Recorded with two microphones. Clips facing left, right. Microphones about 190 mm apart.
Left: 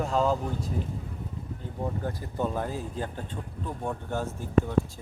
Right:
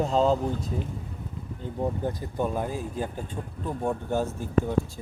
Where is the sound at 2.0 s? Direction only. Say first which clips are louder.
Right 2 dB; 20° right (ahead or behind).